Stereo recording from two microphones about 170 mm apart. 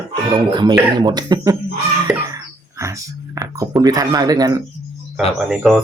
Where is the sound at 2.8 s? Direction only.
20° right (ahead or behind).